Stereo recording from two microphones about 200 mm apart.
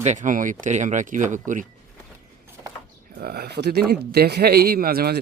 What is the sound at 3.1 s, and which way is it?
Speech, 50° right (ahead or behind).